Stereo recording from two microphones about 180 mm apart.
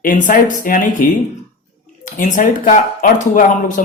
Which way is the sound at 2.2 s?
45° left (ahead or behind).